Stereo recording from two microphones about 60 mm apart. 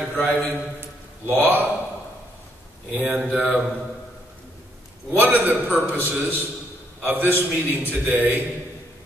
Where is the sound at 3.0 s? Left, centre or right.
Right.